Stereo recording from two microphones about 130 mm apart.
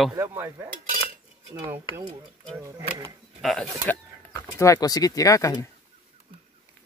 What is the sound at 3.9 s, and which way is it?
Speech, 15° left (ahead or behind).